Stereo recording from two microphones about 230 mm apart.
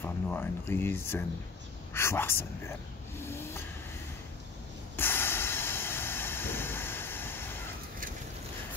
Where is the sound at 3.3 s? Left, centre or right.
Centre.